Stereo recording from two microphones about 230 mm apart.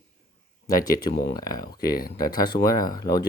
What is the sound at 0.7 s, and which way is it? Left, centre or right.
Speech, centre.